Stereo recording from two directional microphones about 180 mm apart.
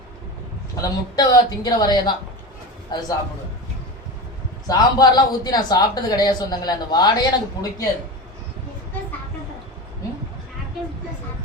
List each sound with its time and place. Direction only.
0.8 s a man's voice: 20° left (ahead or behind)
4.6 s a man's voice: 20° left (ahead or behind)